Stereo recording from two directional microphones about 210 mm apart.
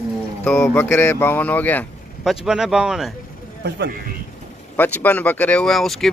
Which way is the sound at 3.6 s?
50° right (ahead or behind).